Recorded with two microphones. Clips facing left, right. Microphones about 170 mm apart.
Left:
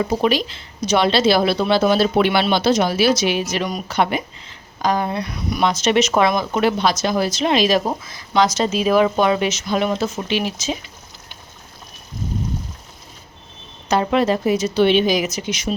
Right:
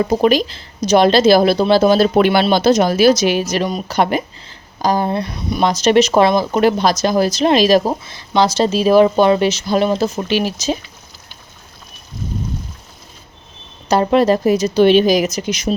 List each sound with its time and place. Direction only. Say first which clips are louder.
0.0 s speech: right 5 dB; 45° right (ahead or behind); by 5.6 s 25° right (ahead or behind)
5.6 s speech: right 5 dB; 40° right (ahead or behind)
13.8 s speech: right 4 dB; 40° right (ahead or behind)